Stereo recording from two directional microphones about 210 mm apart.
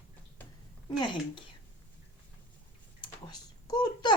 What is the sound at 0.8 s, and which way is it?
Speech, 25° left (ahead or behind).